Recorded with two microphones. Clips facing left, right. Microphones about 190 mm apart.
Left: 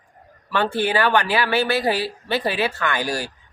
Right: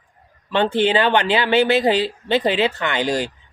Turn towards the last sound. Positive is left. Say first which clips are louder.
# right 3 dB
turn(degrees=-20)  # may be behind; listen again after turning